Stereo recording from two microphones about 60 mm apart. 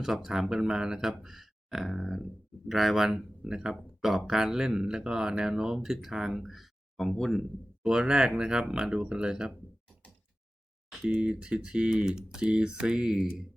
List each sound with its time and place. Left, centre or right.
0.0 s speech: centre
7.8 s speech: centre
11.1 s speech: centre